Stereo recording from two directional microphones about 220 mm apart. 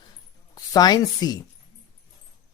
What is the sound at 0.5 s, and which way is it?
Speech, 15° left (ahead or behind).